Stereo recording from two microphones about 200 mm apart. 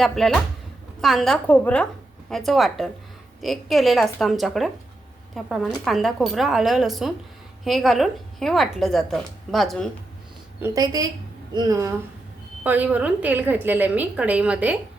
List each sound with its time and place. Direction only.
0.2 s a woman's voice: centre (ahead or behind)
10.6 s a woman's voice: 20° right (ahead or behind)